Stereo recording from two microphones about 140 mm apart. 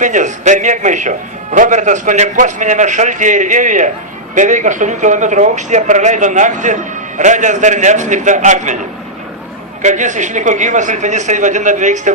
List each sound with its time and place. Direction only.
0.0 s a man's voice: 60° right (ahead or behind)
9.8 s a man's voice: 60° right (ahead or behind)